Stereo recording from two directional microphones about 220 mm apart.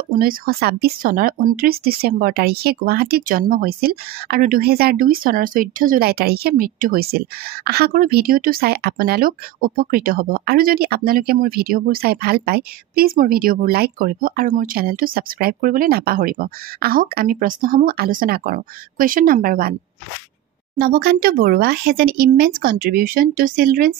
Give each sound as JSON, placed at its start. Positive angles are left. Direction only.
{"t": 0.1, "sound": "speech", "side_deg": -40}
{"t": 20.8, "sound": "speech", "side_deg": -40}